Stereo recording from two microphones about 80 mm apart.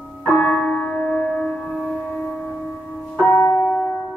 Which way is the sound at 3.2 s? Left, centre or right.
Left.